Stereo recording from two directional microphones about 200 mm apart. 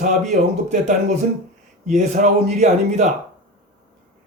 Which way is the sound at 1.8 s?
35° right (ahead or behind).